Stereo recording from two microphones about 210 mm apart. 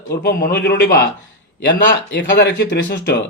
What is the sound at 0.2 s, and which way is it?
Speech, 45° left (ahead or behind).